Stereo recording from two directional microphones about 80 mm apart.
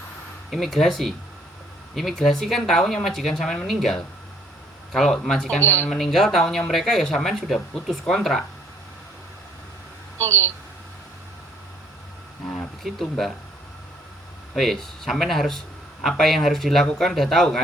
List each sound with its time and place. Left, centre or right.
0.5 s speech: centre
5.5 s speech: left
5.9 s speech: centre
12.5 s speech: centre
14.5 s speech: centre